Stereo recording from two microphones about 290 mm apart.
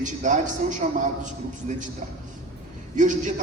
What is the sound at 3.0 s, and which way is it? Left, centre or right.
Speech, right.